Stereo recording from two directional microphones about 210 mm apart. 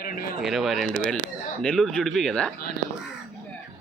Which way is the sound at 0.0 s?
45° left (ahead or behind).